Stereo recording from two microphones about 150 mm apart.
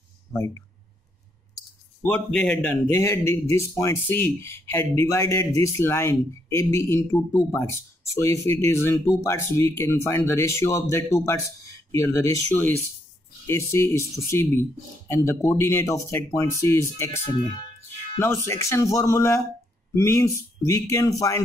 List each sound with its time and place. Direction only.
0.3 s speech: 20° left (ahead or behind)
2.0 s speech: 10° left (ahead or behind)
18.2 s speech: 20° left (ahead or behind)